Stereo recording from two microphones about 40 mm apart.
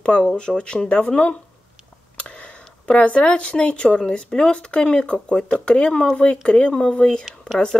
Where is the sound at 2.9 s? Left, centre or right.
Left.